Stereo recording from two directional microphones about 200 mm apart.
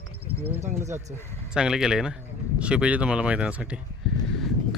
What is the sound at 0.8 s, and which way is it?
Speech, 15° right (ahead or behind).